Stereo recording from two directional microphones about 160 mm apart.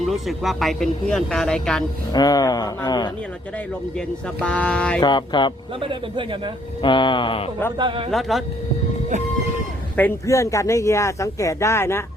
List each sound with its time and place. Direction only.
0.0 s speech: centre (ahead or behind)
2.1 s speech: 25° left (ahead or behind)
4.4 s mantra: 5° left (ahead or behind)
4.9 s speech: 25° left (ahead or behind)
5.8 s a man's voice: 30° right (ahead or behind)
6.8 s speech: 30° left (ahead or behind)
7.8 s a man's voice: 30° right (ahead or behind)
8.1 s speech: centre (ahead or behind)
9.9 s speech: 15° left (ahead or behind)